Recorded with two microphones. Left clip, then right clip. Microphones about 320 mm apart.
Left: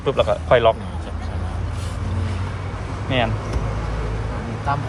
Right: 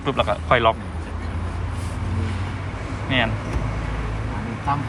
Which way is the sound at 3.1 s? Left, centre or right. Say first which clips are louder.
Even; centre.